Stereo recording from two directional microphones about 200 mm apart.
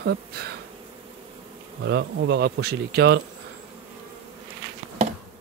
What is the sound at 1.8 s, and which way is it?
Speech, 55° right (ahead or behind).